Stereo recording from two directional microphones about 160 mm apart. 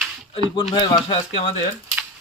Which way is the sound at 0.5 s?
25° left (ahead or behind).